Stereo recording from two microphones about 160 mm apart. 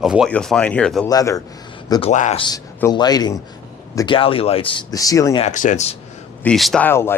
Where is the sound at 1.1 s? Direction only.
20° left (ahead or behind).